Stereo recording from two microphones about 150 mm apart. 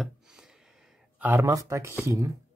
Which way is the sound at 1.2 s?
15° right (ahead or behind).